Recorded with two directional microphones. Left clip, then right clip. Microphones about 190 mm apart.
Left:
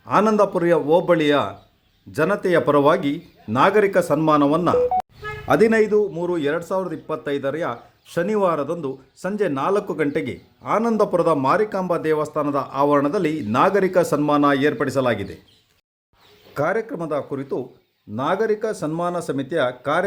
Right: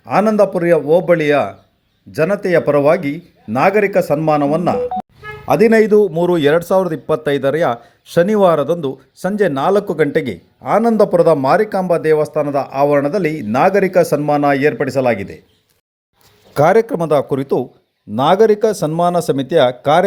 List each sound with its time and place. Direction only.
0.0 s a man's voice: 15° right (ahead or behind)
16.6 s speech: 30° right (ahead or behind)